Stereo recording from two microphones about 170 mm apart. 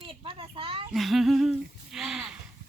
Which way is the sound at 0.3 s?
30° right (ahead or behind).